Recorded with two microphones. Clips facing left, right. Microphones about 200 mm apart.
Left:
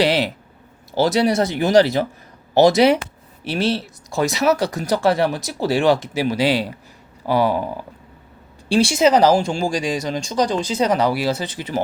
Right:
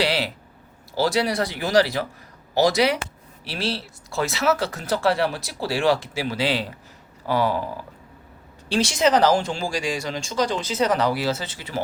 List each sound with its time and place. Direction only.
0.0 s a sound: 20° left (ahead or behind)
0.9 s speech: 20° left (ahead or behind)
8.7 s speech: 10° left (ahead or behind)